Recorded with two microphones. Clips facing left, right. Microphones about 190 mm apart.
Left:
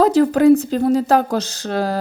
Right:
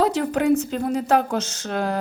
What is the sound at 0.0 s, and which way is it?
A woman's voice, 40° left (ahead or behind).